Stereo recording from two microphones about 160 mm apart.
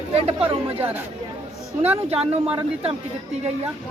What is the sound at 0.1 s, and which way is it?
Chatter, 40° right (ahead or behind).